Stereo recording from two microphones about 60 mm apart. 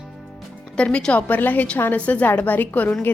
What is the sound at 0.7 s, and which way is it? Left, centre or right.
Speech, centre.